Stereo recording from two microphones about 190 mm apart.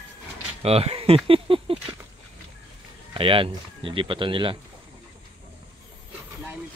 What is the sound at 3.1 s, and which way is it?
Speech, 30° right (ahead or behind).